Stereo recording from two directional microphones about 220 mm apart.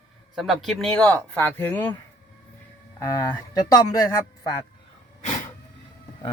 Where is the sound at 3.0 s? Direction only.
15° left (ahead or behind).